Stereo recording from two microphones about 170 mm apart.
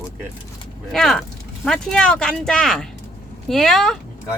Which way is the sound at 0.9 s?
Centre (ahead or behind).